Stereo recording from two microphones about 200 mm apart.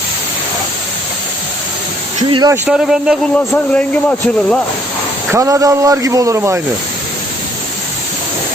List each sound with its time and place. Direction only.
2.3 s speech: 20° right (ahead or behind)
2.6 s a man's voice: 5° right (ahead or behind)
5.3 s speech: 15° right (ahead or behind)